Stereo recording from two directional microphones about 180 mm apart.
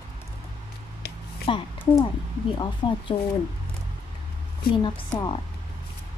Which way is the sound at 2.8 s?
25° left (ahead or behind).